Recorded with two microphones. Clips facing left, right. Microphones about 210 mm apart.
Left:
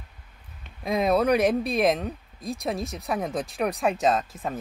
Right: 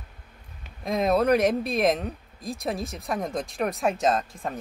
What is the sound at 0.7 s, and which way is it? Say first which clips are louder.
Speech: even; centre (ahead or behind).